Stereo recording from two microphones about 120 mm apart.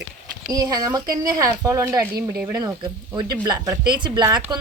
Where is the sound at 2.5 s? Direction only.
35° right (ahead or behind).